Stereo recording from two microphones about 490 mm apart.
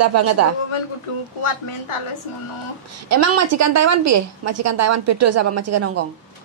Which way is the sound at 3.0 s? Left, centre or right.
Right.